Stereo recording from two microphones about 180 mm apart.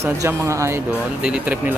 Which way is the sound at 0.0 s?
15° right (ahead or behind).